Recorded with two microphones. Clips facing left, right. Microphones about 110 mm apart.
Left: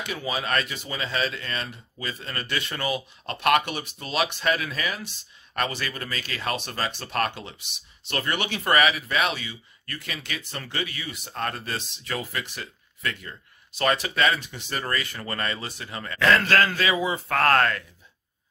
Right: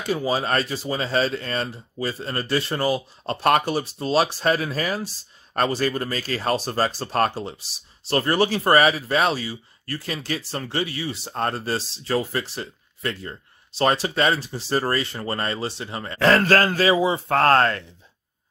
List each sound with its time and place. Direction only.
0.0 s speech: 35° right (ahead or behind)